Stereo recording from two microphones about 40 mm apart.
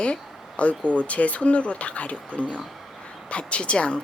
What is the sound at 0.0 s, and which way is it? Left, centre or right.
Speech, left.